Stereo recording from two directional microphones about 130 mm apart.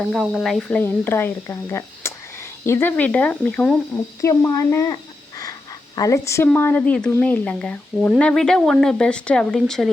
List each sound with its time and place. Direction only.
0.0 s speech: centre (ahead or behind)
0.8 s speech: 15° left (ahead or behind)
4.2 s speech: 25° left (ahead or behind)
6.0 s speech: 25° left (ahead or behind); by 9.9 s 5° left (ahead or behind)